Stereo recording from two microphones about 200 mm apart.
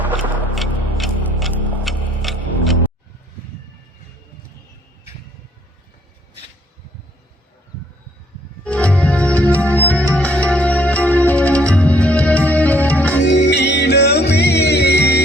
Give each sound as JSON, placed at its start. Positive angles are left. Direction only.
{"t": 0.5, "sound": "tick-tock", "side_deg": 0}
{"t": 8.6, "sound": "music", "side_deg": 5}
{"t": 13.2, "sound": "music", "side_deg": 60}